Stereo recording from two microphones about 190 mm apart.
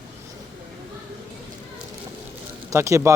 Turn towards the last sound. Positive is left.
turn(degrees=-15)  # may be behind; listen again after turning